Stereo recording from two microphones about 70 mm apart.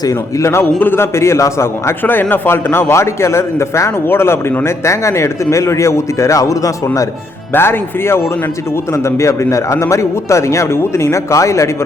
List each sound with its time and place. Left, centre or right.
0.3 s a man's voice: left
2.0 s a man's voice: left
7.5 s a man's voice: left